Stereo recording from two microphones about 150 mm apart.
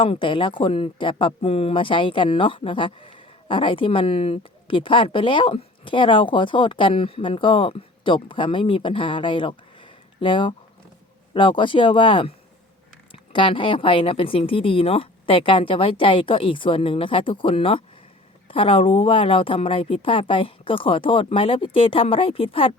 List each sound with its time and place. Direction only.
0.0 s speech: 35° left (ahead or behind)
13.3 s speech: 35° left (ahead or behind)